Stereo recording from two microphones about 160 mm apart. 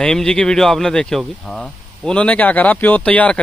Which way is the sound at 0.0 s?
5° left (ahead or behind).